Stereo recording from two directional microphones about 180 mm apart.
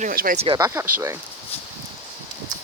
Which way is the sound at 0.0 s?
50° right (ahead or behind).